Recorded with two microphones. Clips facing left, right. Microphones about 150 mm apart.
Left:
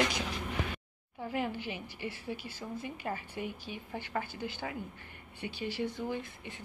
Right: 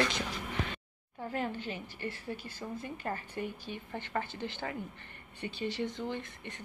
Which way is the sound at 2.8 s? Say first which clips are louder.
Even; 10° left (ahead or behind).